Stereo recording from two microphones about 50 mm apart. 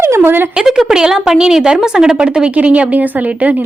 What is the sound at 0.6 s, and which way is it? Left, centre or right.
A woman's voice, centre.